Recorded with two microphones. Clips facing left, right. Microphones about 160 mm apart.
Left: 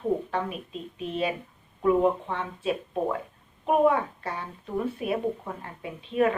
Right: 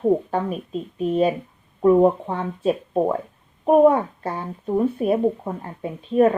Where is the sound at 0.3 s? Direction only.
40° right (ahead or behind).